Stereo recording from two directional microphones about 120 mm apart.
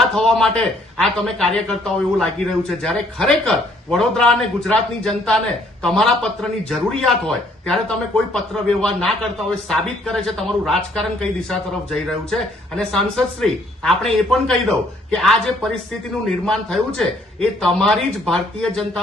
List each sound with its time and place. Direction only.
0.1 s speech: 5° left (ahead or behind)